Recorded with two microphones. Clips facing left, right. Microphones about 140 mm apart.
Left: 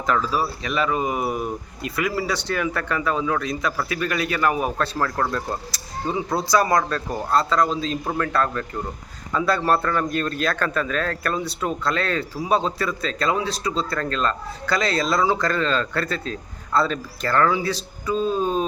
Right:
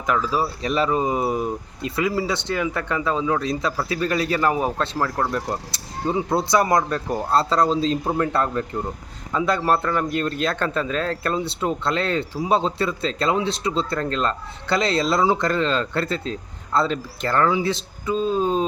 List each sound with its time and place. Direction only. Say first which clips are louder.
0.0 s speech: even; 15° right (ahead or behind)
0.6 s speech: right 2 dB; 35° right (ahead or behind)
4.9 s speech: right 1 dB; 10° right (ahead or behind)
5.7 s speech: right 3 dB; 25° right (ahead or behind)